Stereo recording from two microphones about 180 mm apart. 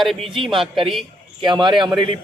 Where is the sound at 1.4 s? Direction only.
25° right (ahead or behind).